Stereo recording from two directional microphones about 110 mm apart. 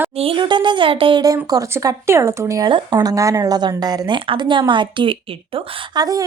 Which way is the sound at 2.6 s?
40° right (ahead or behind).